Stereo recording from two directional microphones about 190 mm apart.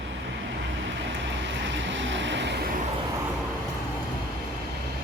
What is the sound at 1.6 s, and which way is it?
Vehicle, 75° right (ahead or behind).